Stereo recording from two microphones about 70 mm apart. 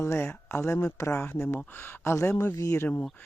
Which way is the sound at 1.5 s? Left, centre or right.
Left.